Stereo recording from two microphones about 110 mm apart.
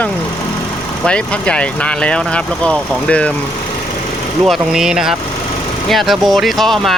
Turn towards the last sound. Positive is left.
turn(degrees=0)  # may be behind; listen again after turning